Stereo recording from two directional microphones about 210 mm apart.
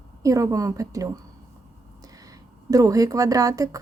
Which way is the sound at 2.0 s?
15° right (ahead or behind).